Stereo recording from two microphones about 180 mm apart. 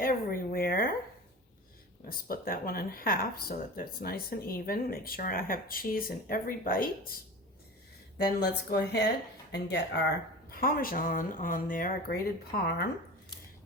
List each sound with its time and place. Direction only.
0.0 s speech: 55° left (ahead or behind)
2.0 s speech: 55° left (ahead or behind)
8.3 s speech: 65° left (ahead or behind)
10.5 s speech: 55° left (ahead or behind)